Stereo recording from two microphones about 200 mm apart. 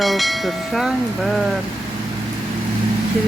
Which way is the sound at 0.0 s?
Centre (ahead or behind).